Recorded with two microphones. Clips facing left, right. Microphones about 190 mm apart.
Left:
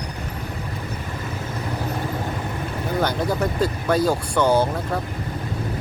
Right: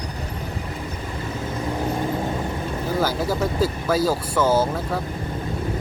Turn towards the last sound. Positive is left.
turn(degrees=-5)  # may be behind; listen again after turning